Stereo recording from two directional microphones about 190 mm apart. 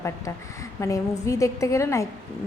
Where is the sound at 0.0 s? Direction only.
15° left (ahead or behind).